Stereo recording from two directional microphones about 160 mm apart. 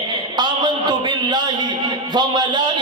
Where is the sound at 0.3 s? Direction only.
30° right (ahead or behind).